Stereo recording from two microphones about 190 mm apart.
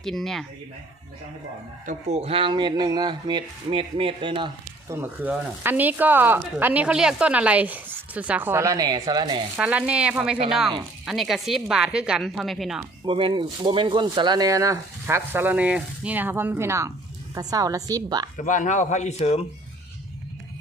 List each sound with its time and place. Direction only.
0.0 s speech: centre (ahead or behind)
1.9 s speech: 35° right (ahead or behind)
4.9 s speech: 10° right (ahead or behind)
9.6 s speech: 5° right (ahead or behind)
13.1 s speech: 25° right (ahead or behind)
18.3 s speech: 40° left (ahead or behind)